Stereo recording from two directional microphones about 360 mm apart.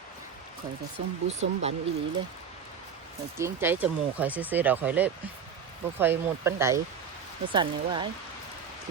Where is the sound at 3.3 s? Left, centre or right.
Centre.